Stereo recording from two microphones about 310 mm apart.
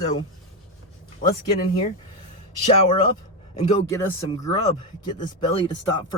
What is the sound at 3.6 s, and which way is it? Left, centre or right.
Speech, left.